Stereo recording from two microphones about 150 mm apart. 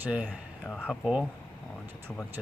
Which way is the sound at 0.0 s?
10° right (ahead or behind).